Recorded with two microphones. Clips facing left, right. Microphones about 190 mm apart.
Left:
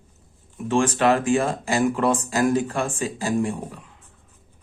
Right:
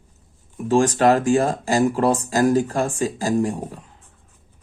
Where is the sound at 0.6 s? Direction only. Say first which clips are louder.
Right 3 dB; 35° right (ahead or behind).